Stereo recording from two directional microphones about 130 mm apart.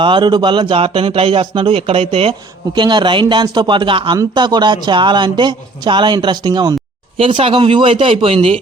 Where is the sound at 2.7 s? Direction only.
35° right (ahead or behind).